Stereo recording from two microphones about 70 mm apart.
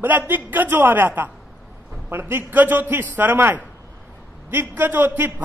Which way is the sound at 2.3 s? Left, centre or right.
Right.